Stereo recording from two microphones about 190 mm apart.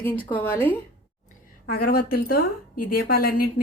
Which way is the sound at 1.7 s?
55° left (ahead or behind).